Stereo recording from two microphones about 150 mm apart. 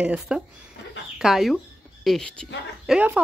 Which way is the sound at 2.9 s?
10° right (ahead or behind).